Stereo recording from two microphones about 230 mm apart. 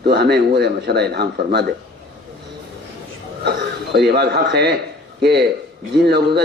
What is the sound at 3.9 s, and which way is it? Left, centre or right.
A man's voice, right.